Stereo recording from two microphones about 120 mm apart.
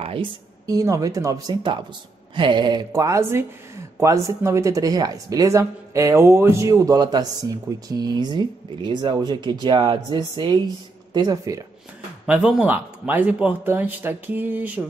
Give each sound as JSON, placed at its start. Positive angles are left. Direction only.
{"t": 0.0, "sound": "a sound", "side_deg": -50}
{"t": 0.7, "sound": "speech", "side_deg": -30}
{"t": 2.3, "sound": "speech", "side_deg": -40}
{"t": 12.3, "sound": "speech", "side_deg": -10}